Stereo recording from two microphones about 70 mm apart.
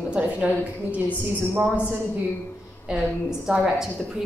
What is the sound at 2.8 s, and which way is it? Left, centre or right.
A woman's voice, centre.